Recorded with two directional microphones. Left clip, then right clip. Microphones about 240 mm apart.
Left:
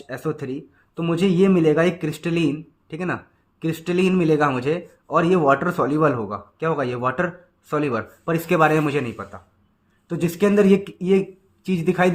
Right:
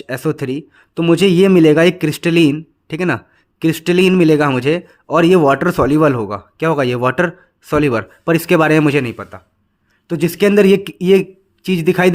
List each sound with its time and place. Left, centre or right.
0.0 s a man's voice: right